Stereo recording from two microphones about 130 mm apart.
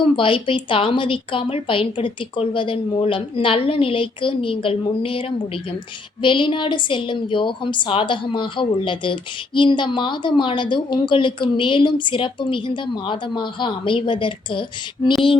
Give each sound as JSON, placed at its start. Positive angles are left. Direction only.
{"t": 0.0, "sound": "a woman's voice", "side_deg": 40}
{"t": 6.2, "sound": "a woman's voice", "side_deg": 40}